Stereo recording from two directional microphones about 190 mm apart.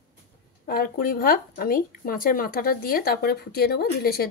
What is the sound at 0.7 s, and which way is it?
Speech, 50° left (ahead or behind).